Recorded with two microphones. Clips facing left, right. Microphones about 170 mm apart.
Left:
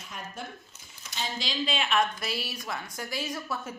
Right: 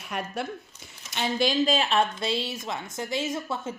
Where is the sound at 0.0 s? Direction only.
70° right (ahead or behind).